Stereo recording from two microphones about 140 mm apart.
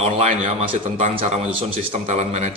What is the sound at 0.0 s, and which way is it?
A man's voice, 50° right (ahead or behind).